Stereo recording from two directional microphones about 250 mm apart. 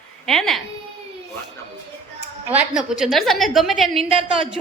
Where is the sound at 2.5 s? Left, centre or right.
Centre.